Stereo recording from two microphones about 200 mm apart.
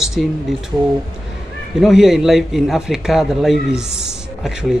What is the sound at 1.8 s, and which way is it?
A man's voice, centre (ahead or behind).